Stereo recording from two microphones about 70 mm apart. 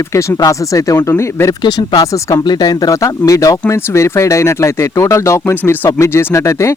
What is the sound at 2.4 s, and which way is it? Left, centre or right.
Speech, left.